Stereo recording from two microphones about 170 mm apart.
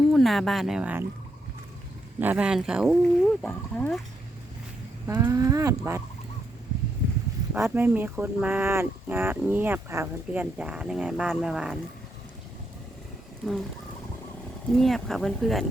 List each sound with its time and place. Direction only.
0.1 s speech: centre (ahead or behind)
2.1 s speech: 10° right (ahead or behind)
3.4 s speech: 5° left (ahead or behind)
5.0 s speech: 15° right (ahead or behind)
7.5 s speech: 10° right (ahead or behind)
13.4 s speech: centre (ahead or behind)
14.7 s speech: centre (ahead or behind)